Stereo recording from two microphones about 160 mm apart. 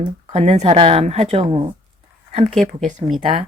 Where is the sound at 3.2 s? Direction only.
35° right (ahead or behind).